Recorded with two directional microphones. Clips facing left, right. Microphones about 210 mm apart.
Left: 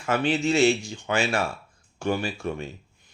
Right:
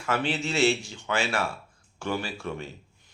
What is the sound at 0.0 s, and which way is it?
Speech, 20° left (ahead or behind).